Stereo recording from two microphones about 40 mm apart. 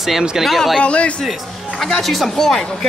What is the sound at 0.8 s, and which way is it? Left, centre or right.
Speech, left.